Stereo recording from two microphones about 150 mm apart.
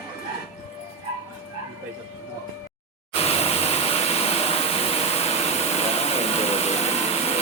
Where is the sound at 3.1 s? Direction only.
40° left (ahead or behind).